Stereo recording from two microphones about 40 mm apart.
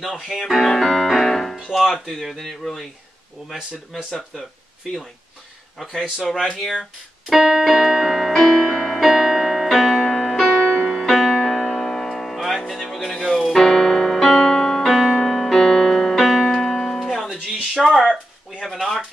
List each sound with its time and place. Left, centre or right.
0.0 s speech: centre
3.9 s speech: centre
6.7 s speech: centre
8.3 s music: centre
12.9 s keyboard: centre
17.1 s music: centre
17.8 s speech: centre
18.1 s a sound: right